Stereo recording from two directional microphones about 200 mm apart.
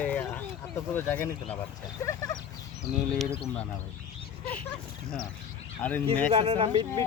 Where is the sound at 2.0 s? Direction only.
15° left (ahead or behind).